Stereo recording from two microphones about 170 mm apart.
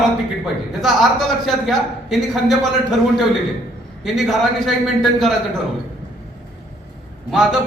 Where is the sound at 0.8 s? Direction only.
Centre (ahead or behind).